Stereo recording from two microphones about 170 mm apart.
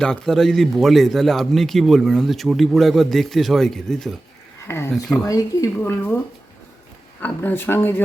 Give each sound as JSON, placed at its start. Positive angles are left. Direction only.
{"t": 0.0, "sound": "speech", "side_deg": 5}
{"t": 4.7, "sound": "speech", "side_deg": 15}
{"t": 7.2, "sound": "speech", "side_deg": 10}